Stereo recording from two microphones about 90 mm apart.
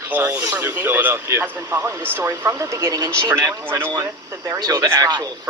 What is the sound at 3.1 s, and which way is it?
Speech, 25° right (ahead or behind).